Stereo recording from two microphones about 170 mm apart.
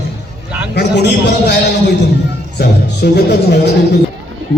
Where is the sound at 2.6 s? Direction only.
80° left.